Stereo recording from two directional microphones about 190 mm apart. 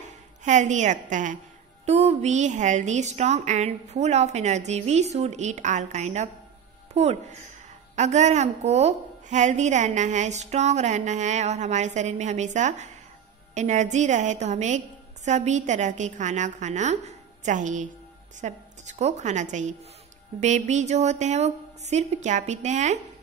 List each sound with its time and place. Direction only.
0.4 s a woman's voice: 40° right (ahead or behind)